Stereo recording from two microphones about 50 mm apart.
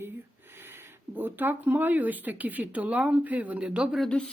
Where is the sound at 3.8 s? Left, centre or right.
Right.